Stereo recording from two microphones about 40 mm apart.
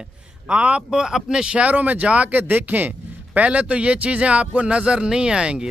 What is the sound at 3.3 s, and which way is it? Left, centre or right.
A man's voice, right.